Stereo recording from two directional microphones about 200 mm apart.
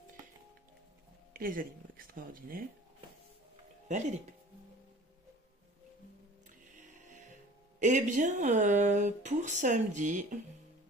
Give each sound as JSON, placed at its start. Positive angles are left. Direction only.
{"t": 1.3, "sound": "speech", "side_deg": -45}
{"t": 3.9, "sound": "speech", "side_deg": -35}
{"t": 6.7, "sound": "music", "side_deg": -40}
{"t": 7.8, "sound": "speech", "side_deg": -35}